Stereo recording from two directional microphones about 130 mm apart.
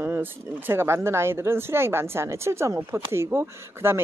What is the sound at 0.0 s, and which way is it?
Speech, 15° right (ahead or behind).